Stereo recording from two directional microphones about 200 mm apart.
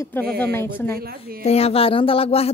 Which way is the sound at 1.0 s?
50° right (ahead or behind).